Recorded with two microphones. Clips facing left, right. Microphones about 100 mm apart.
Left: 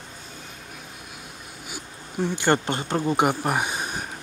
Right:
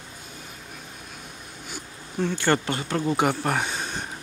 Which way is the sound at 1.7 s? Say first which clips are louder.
Even; 10° left (ahead or behind).